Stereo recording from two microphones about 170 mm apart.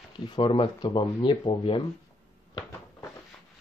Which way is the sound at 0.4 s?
30° left (ahead or behind).